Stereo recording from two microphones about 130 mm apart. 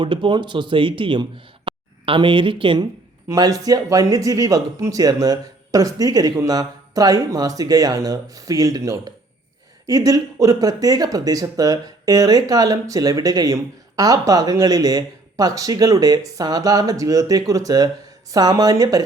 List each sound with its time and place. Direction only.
0.0 s speech: 40° right (ahead or behind)
3.2 s speech: 25° right (ahead or behind)